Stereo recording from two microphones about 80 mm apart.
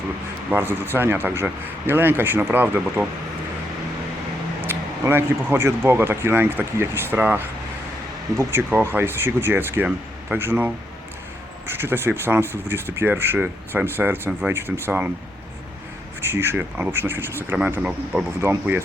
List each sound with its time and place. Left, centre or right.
0.5 s speech: right
4.6 s speech: right
16.2 s speech: right
17.6 s speech: centre